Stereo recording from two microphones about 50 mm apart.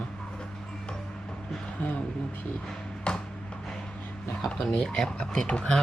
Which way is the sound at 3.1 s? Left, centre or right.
Left.